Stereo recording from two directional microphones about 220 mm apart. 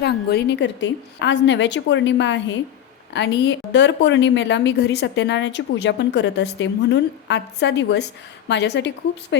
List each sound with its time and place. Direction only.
0.0 s a woman's voice: 50° left (ahead or behind)